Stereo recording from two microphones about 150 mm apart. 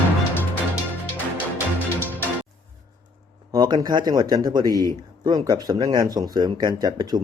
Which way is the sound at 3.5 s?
25° right (ahead or behind).